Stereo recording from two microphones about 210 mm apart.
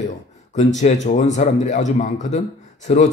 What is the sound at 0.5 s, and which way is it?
A man's voice, 35° left (ahead or behind).